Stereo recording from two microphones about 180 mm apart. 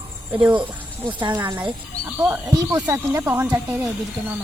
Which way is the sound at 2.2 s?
15° right (ahead or behind).